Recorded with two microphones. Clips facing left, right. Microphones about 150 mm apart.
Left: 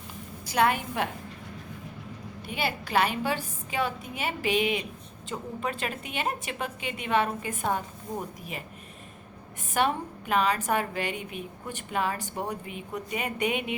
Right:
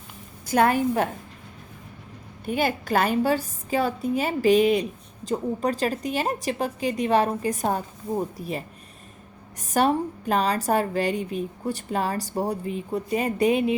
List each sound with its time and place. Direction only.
0.4 s a woman's voice: 45° right (ahead or behind)
2.5 s a woman's voice: 45° right (ahead or behind)
9.6 s a woman's voice: 40° right (ahead or behind)